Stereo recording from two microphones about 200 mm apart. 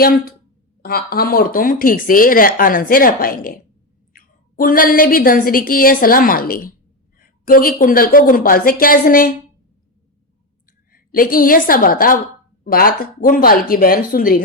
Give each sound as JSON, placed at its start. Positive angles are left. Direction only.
{"t": 0.8, "sound": "speech", "side_deg": 50}
{"t": 10.7, "sound": "a woman's voice", "side_deg": 45}